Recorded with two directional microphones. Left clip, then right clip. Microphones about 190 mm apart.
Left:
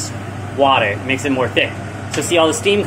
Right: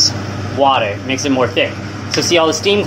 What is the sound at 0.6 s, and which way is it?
Speech, 20° right (ahead or behind).